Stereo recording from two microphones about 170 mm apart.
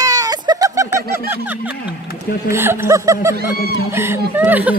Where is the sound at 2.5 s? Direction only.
15° right (ahead or behind).